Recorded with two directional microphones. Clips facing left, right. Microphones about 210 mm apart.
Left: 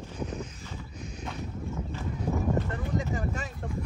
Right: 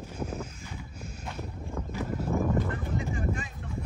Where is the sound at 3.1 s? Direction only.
40° left (ahead or behind).